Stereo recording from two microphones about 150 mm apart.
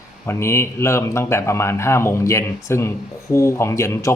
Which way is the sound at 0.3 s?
15° left (ahead or behind).